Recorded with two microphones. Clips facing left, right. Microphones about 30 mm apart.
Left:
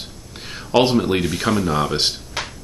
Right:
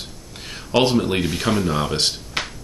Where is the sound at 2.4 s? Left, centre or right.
Right.